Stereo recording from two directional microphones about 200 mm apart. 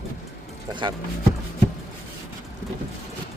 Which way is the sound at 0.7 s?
25° right (ahead or behind).